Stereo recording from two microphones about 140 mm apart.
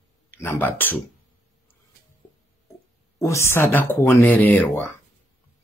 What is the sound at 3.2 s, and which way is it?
Speech, 20° left (ahead or behind).